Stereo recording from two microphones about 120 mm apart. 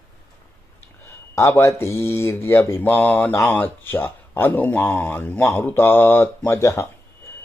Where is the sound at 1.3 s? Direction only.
20° left (ahead or behind).